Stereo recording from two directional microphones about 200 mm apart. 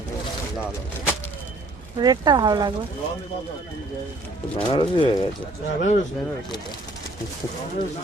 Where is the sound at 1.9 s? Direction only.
20° right (ahead or behind).